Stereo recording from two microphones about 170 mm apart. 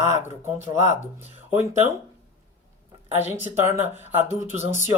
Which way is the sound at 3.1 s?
10° right (ahead or behind).